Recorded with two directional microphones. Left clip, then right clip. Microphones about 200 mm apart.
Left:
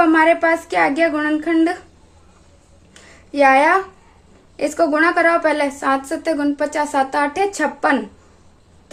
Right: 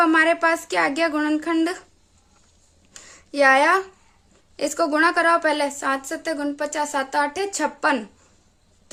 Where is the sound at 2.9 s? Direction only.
40° right (ahead or behind).